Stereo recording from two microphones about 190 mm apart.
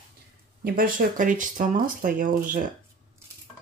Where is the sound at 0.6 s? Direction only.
50° right (ahead or behind).